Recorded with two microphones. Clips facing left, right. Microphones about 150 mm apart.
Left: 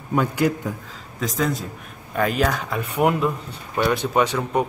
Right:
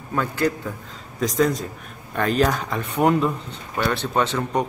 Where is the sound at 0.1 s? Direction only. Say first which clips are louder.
Left 2 dB; 15° left (ahead or behind).